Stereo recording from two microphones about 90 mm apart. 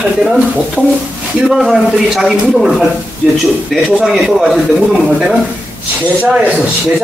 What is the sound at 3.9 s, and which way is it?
A man's voice, 5° right (ahead or behind).